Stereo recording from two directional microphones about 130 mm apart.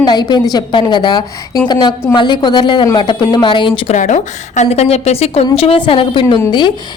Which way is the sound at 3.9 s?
65° left (ahead or behind).